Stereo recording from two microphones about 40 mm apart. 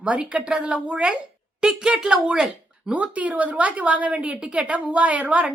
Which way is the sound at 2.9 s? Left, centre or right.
Right.